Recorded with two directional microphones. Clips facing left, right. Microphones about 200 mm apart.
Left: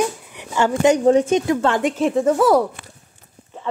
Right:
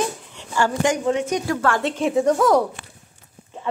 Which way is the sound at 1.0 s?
35° left (ahead or behind).